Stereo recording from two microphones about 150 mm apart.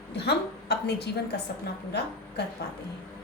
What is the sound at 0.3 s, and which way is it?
Speech, 90° left.